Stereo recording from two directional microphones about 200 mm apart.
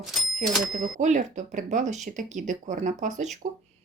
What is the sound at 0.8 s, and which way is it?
Speech, 40° right (ahead or behind).